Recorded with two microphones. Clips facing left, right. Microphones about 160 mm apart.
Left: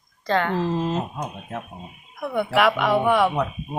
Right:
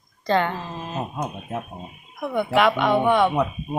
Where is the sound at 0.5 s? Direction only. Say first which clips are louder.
Left 9 dB; 85° left.